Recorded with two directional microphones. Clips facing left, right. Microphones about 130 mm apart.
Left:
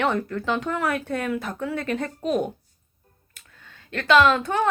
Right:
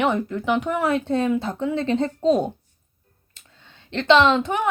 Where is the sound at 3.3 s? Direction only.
25° right (ahead or behind).